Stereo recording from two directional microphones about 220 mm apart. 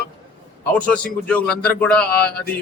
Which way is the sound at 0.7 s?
5° left (ahead or behind).